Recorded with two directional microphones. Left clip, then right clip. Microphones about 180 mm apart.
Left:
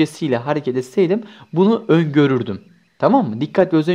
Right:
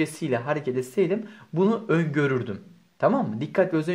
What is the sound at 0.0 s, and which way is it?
Speech, 40° left (ahead or behind).